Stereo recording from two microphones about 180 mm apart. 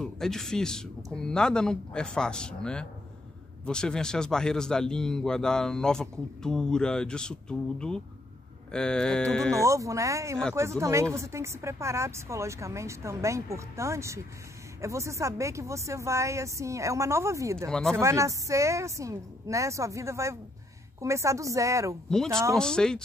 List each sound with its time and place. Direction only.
0.0 s a man's voice: centre (ahead or behind)
9.6 s speech: 15° right (ahead or behind)
17.6 s a man's voice: 5° left (ahead or behind)
17.9 s speech: 15° right (ahead or behind)
22.1 s a man's voice: 5° left (ahead or behind)